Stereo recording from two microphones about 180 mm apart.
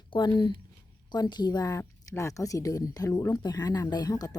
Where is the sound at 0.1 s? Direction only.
25° left (ahead or behind).